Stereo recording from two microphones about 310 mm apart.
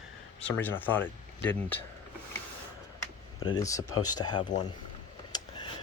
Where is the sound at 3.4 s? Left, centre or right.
Centre.